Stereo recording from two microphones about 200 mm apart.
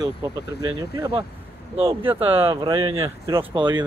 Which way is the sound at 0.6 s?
25° right (ahead or behind).